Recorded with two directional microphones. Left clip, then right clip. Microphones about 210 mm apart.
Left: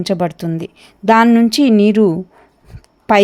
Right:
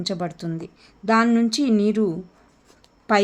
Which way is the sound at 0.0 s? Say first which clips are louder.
Left 10 dB; 30° left (ahead or behind).